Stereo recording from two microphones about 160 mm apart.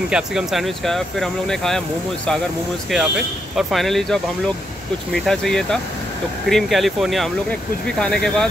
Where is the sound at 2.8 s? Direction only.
Centre (ahead or behind).